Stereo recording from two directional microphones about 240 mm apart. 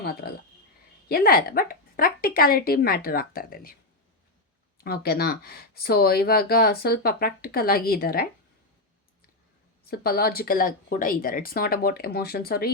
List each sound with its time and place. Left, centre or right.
1.0 s speech: left
4.8 s speech: left
9.8 s speech: left